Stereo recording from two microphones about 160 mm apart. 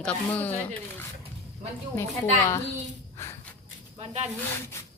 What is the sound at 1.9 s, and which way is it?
Speech, 15° left (ahead or behind).